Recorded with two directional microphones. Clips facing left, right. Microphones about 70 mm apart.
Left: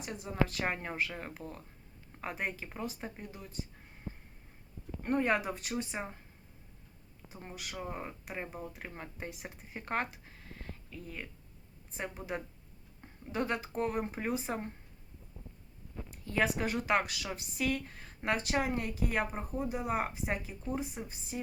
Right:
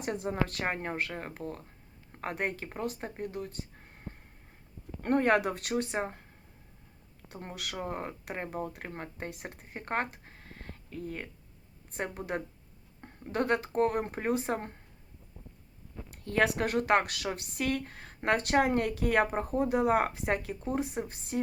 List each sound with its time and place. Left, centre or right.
0.0 s speech: right
5.0 s a woman's voice: right
7.3 s a woman's voice: right
7.8 s speech: right
16.0 s a woman's voice: right